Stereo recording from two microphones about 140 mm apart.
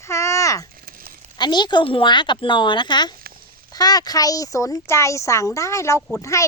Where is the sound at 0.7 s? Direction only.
90° right.